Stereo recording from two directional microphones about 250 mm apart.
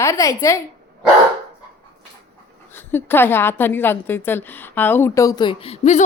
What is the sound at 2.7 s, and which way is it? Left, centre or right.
A woman's voice, centre.